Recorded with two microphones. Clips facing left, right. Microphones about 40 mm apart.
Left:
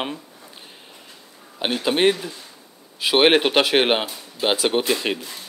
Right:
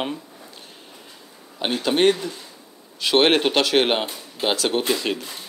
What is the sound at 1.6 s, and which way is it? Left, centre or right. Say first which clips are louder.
Speech: even; centre.